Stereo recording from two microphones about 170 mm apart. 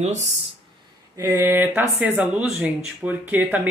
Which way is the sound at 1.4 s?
10° right (ahead or behind).